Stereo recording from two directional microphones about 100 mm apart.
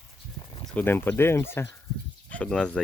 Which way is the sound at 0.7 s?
20° left (ahead or behind).